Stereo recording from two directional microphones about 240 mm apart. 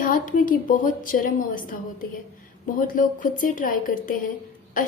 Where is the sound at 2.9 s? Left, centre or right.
Left.